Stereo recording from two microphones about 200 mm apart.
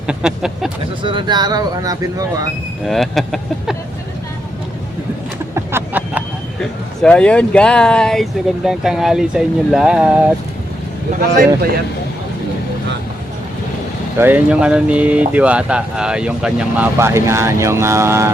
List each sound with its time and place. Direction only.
0.1 s a sound: 5° right (ahead or behind)
1.0 s speech: 25° right (ahead or behind)
2.8 s speech: centre (ahead or behind)
5.5 s vehicle: 10° right (ahead or behind)
6.6 s speech: 5° left (ahead or behind)
14.2 s speech: 10° right (ahead or behind)